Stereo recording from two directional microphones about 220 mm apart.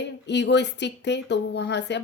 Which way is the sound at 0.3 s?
50° left (ahead or behind).